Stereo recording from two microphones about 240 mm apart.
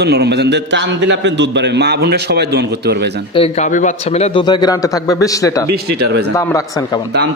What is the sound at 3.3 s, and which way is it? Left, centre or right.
A man's voice, left.